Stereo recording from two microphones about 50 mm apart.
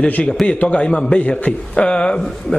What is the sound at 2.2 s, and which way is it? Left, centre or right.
Speech, centre.